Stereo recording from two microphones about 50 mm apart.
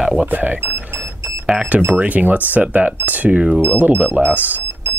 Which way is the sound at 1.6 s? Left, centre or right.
Right.